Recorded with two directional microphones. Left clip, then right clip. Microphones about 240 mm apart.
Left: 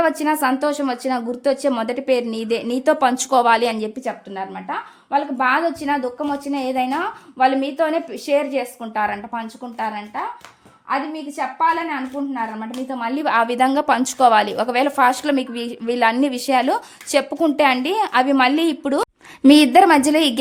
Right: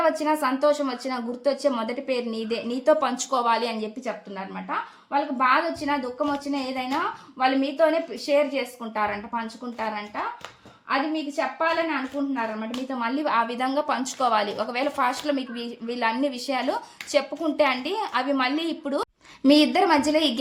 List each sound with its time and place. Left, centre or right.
0.0 s a woman's voice: left
13.0 s a woman's voice: left